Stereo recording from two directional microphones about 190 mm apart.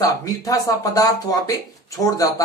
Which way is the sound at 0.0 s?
20° left (ahead or behind).